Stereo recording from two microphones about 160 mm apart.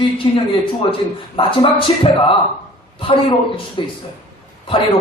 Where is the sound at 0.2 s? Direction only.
30° left (ahead or behind).